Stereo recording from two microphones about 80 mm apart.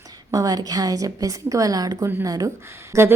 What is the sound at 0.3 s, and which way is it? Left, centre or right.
A woman's voice, right.